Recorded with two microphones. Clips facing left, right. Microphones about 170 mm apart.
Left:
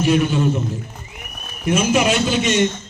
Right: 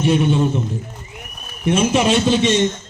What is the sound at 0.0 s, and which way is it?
Speech, 30° right (ahead or behind).